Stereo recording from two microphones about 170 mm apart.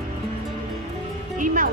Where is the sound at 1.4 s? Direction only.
50° right (ahead or behind).